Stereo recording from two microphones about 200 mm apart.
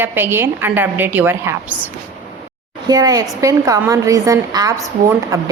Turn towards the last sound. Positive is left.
turn(degrees=-15)  # may be behind; listen again after turning